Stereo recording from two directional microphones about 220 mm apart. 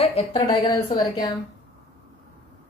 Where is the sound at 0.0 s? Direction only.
25° left (ahead or behind).